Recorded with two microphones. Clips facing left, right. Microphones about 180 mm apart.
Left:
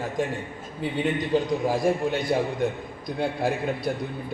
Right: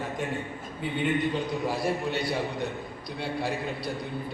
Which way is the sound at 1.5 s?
45° left (ahead or behind).